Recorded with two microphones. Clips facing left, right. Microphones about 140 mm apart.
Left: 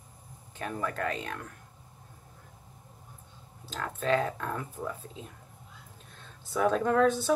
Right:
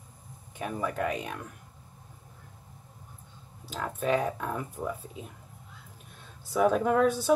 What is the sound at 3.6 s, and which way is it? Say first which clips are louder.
Speech: even; 10° right (ahead or behind).